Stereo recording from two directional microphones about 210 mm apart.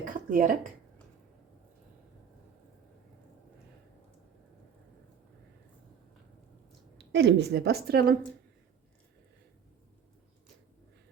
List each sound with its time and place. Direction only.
0.0 s speech: 40° right (ahead or behind)
7.1 s a woman's voice: 55° right (ahead or behind)